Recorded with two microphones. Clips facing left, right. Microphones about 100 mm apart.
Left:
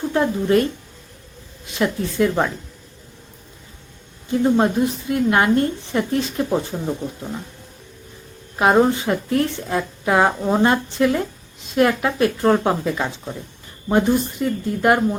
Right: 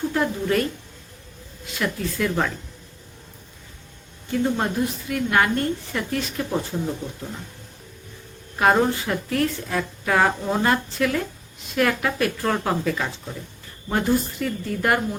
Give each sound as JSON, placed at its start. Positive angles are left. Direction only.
{"t": 0.1, "sound": "a woman's voice", "side_deg": 25}
{"t": 1.7, "sound": "a woman's voice", "side_deg": 25}
{"t": 4.3, "sound": "a woman's voice", "side_deg": 25}
{"t": 8.5, "sound": "a woman's voice", "side_deg": 20}